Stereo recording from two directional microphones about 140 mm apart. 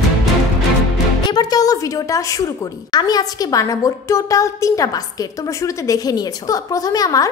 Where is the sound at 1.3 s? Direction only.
30° left (ahead or behind).